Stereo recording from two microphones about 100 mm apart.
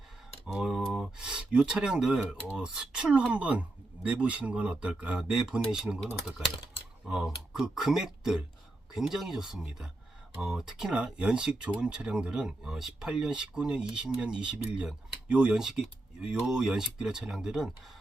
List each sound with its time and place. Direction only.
0.4 s speech: 5° right (ahead or behind)